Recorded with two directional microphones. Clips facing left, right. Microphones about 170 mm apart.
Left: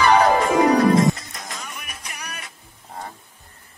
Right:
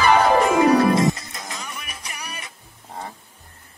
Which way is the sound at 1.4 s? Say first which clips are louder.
Right 1 dB; 15° right (ahead or behind).